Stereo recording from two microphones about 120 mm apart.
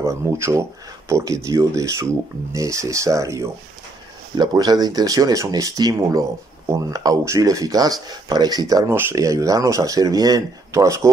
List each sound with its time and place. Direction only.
0.0 s speech: 25° right (ahead or behind)